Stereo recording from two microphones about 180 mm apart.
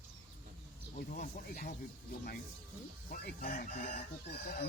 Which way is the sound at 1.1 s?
45° left (ahead or behind).